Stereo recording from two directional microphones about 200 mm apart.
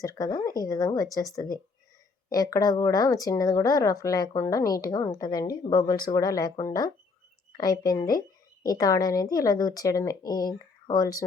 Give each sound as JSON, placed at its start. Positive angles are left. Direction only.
{"t": 0.0, "sound": "speech", "side_deg": 15}